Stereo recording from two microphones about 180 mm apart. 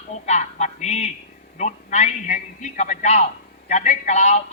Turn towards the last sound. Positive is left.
turn(degrees=40)  # may be behind; listen again after turning